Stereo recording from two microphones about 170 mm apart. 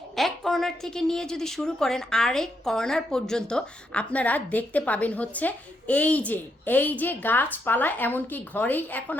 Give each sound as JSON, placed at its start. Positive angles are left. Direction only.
{"t": 0.2, "sound": "a woman's voice", "side_deg": 0}